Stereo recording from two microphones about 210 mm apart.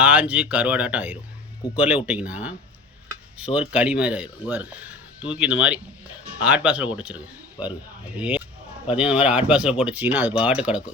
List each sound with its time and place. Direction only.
0.0 s speech: 5° right (ahead or behind)
7.6 s speech: 20° left (ahead or behind)
8.1 s speech: 5° right (ahead or behind)